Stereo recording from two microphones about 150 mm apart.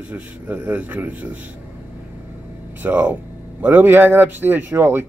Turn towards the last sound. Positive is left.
turn(degrees=-15)  # may be behind; listen again after turning